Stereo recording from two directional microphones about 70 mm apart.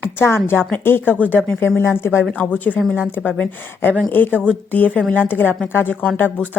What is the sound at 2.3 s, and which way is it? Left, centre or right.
Speech, left.